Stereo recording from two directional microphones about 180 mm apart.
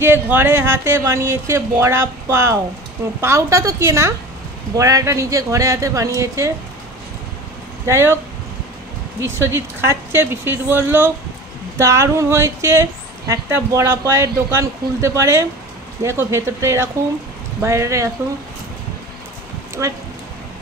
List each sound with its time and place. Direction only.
0.0 s speech: 10° right (ahead or behind)
7.8 s speech: 15° right (ahead or behind)
9.2 s speech: 15° right (ahead or behind)
19.8 s speech: 15° right (ahead or behind)